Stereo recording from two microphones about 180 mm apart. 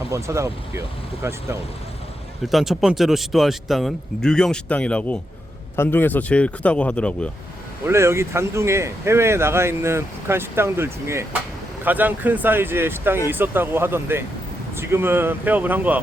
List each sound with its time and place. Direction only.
0.1 s speech: 15° right (ahead or behind)
2.5 s speech: centre (ahead or behind)
7.9 s speech: 15° right (ahead or behind)